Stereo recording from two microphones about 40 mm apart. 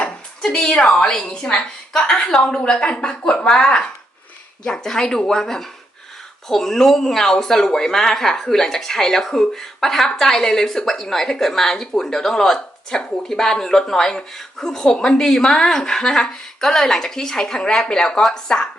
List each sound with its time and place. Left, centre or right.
0.0 s a woman's voice: left